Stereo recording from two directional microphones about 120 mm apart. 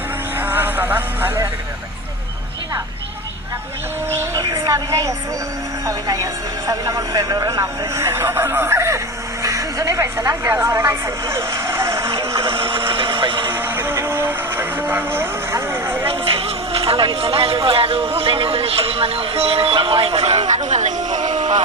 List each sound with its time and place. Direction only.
0.3 s music: 15° right (ahead or behind)
4.4 s a woman's voice: 30° right (ahead or behind)
12.5 s a sound: 45° right (ahead or behind)
13.5 s a sound: 15° right (ahead or behind)
16.0 s music: 50° right (ahead or behind)
17.7 s speech: 50° right (ahead or behind); by 21.2 s 75° right (ahead or behind)
21.2 s music: 35° right (ahead or behind)